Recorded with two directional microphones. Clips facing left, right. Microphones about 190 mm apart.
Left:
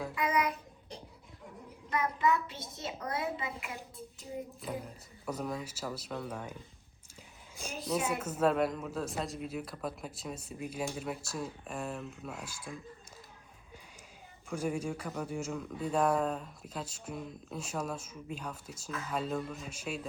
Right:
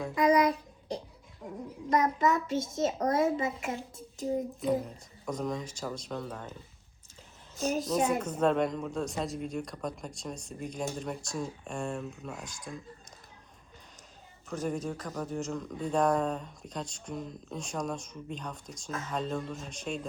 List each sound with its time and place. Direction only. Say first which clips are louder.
0.1 s child singing: right 9 dB; 35° right (ahead or behind)
1.9 s a child's voice: right 4 dB; 40° right (ahead or behind)
5.2 s speech: right 3 dB; 5° left (ahead or behind)
7.6 s speech: right 6 dB; 10° left (ahead or behind)
14.5 s speech: right 1 dB; 10° left (ahead or behind)